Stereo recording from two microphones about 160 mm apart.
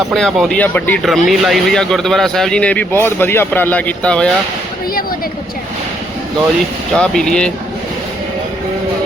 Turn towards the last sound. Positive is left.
turn(degrees=5)  # may be behind; listen again after turning